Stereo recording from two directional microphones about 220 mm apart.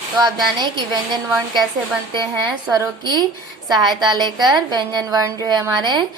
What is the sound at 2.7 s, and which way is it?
Speech, 15° right (ahead or behind).